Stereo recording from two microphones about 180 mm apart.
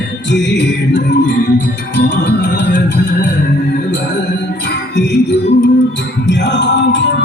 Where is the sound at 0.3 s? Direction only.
75° left (ahead or behind).